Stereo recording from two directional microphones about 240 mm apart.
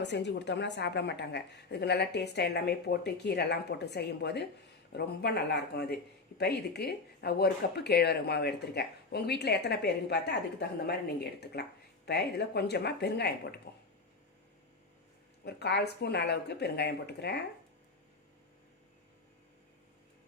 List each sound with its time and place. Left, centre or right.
0.0 s speech: left
15.4 s speech: left